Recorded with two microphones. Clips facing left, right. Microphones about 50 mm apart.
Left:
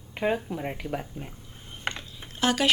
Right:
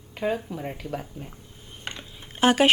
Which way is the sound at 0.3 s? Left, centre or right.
Centre.